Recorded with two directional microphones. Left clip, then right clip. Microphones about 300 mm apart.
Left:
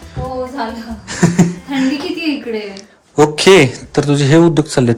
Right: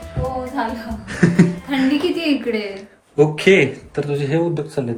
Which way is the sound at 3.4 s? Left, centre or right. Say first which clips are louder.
Left 8 dB; centre.